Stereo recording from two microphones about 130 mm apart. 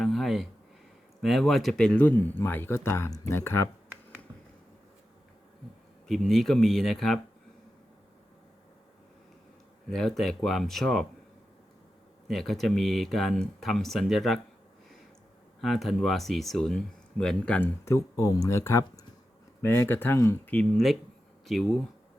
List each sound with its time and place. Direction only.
0.0 s a sound: centre (ahead or behind)
1.2 s speech: centre (ahead or behind); by 3.7 s 20° left (ahead or behind)
6.1 s speech: centre (ahead or behind)
9.9 s speech: centre (ahead or behind)
12.3 s speech: centre (ahead or behind)
15.6 s speech: centre (ahead or behind); by 20.3 s 20° left (ahead or behind)
20.5 s speech: 5° left (ahead or behind)